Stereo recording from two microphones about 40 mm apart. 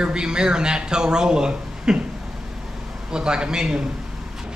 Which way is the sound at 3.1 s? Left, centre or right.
Centre.